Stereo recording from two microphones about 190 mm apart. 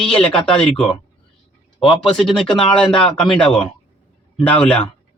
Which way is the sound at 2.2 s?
5° left (ahead or behind).